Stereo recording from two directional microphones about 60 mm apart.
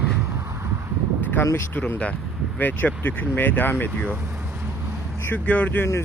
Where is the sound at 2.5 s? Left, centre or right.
Left.